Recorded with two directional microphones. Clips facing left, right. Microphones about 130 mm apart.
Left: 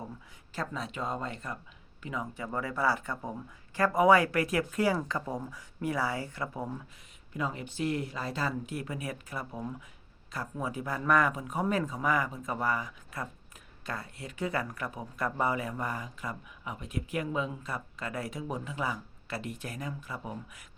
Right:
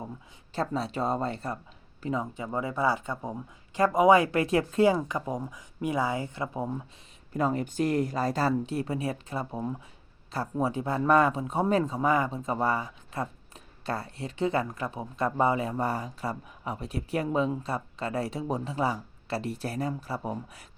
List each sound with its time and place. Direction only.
0.5 s speech: 30° right (ahead or behind)
2.3 s speech: 20° right (ahead or behind)
7.3 s speech: 40° right (ahead or behind)